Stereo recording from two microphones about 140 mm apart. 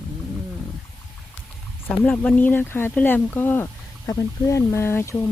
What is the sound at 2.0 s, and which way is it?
Speech, 10° left (ahead or behind).